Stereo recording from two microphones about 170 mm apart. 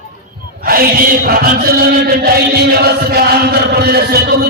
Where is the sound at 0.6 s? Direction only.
60° right (ahead or behind).